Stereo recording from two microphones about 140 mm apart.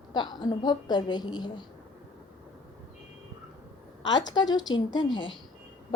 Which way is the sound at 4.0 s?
30° left (ahead or behind).